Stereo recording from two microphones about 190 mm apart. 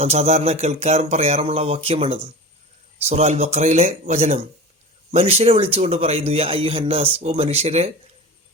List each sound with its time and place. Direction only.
0.0 s speech: 35° right (ahead or behind)